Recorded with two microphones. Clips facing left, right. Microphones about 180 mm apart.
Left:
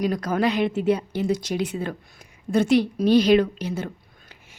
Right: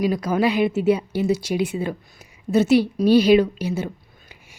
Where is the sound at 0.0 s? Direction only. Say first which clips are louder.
Right 2 dB; 10° right (ahead or behind).